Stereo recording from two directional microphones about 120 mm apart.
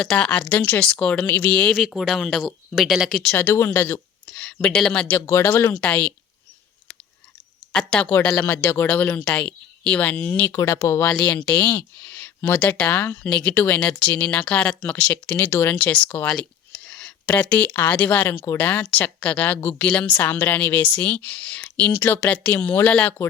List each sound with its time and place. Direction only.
0.0 s speech: 5° left (ahead or behind)
1.7 s speech: 5° right (ahead or behind)
3.3 s speech: 20° left (ahead or behind)
4.3 s speech: 5° left (ahead or behind)
5.3 s speech: 20° left (ahead or behind)
7.7 s speech: 5° left (ahead or behind)
11.1 s speech: 10° left (ahead or behind)
16.3 s a sound: 5° left (ahead or behind)
17.7 s speech: 10° left (ahead or behind)